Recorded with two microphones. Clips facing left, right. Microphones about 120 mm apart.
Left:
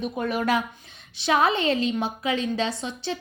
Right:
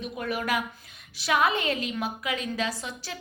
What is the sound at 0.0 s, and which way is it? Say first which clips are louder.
A woman's voice: left 5 dB; 25° left (ahead or behind).